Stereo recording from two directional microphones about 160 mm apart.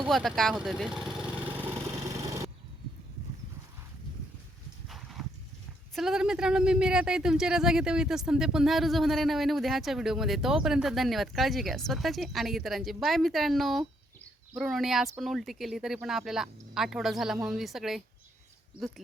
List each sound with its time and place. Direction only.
0.0 s a woman's voice: centre (ahead or behind)
2.0 s a sound: 20° right (ahead or behind)
4.9 s horse: centre (ahead or behind)
5.9 s a woman's voice: centre (ahead or behind)